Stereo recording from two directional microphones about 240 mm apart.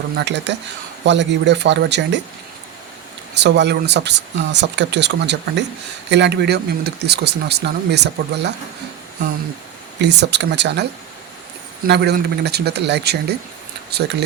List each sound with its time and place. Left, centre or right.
0.2 s speech: right
3.3 s speech: right
10.0 s speech: right
11.9 s speech: right